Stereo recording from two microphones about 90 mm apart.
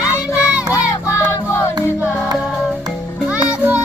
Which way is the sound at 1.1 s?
35° left (ahead or behind).